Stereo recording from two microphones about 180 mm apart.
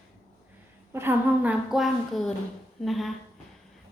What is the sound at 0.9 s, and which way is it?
Speech, 10° right (ahead or behind).